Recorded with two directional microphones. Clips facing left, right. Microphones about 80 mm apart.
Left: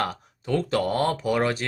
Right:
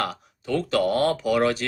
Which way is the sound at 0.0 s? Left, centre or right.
Left.